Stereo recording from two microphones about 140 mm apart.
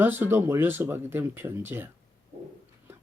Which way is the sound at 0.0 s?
15° right (ahead or behind).